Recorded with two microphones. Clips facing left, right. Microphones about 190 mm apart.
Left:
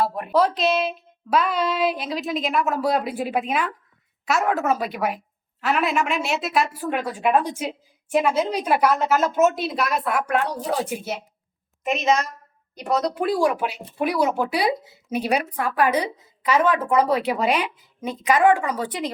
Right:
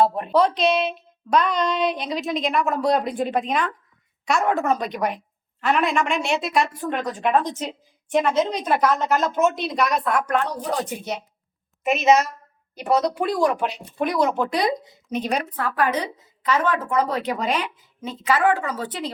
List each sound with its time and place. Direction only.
0.0 s a sound: 25° right (ahead or behind)
0.3 s a woman's voice: centre (ahead or behind)
11.9 s a woman's voice: 5° right (ahead or behind); by 19.1 s 15° left (ahead or behind)